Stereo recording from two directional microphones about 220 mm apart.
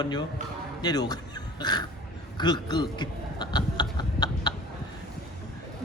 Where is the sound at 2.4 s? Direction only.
20° left (ahead or behind).